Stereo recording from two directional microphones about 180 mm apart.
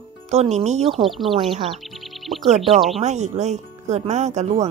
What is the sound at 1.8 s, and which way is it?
Music, centre (ahead or behind).